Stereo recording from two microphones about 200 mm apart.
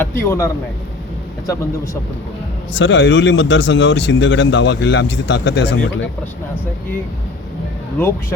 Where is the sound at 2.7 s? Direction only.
65° left (ahead or behind).